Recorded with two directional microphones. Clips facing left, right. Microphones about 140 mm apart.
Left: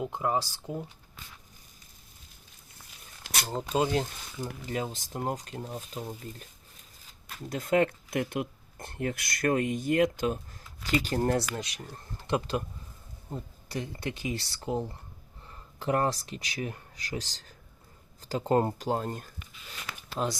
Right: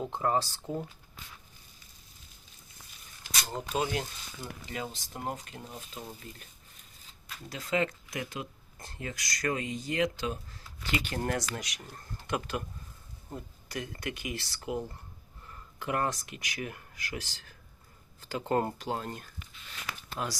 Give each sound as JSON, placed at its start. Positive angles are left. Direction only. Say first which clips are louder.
{"t": 0.0, "sound": "speech", "louder": "even", "side_deg": 10}
{"t": 3.5, "sound": "speech", "louder": "left 5 dB", "side_deg": 25}
{"t": 4.7, "sound": "speech", "louder": "left 5 dB", "side_deg": 40}
{"t": 5.7, "sound": "speech", "louder": "left 4 dB", "side_deg": 25}
{"t": 7.3, "sound": "speech", "louder": "left 6 dB", "side_deg": 50}
{"t": 18.8, "sound": "speech", "louder": "left 5 dB", "side_deg": 40}
{"t": 20.2, "sound": "speech", "louder": "left 5 dB", "side_deg": 20}